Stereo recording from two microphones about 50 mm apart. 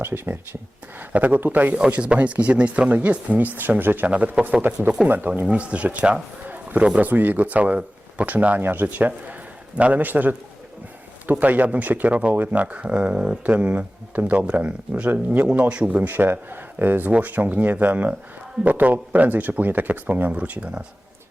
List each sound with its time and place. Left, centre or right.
0.0 s speech: right
0.9 s speech: right
4.1 s speech: right
4.7 s speech: right
5.5 s speech: right
7.0 s speech: right
16.0 s speech: right